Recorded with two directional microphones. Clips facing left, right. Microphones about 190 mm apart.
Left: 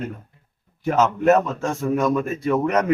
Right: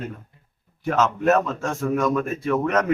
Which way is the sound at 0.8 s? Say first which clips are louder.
Left 3 dB; 20° left (ahead or behind).